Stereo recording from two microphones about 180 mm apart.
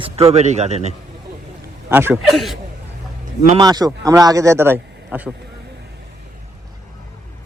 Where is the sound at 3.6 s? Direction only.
20° right (ahead or behind).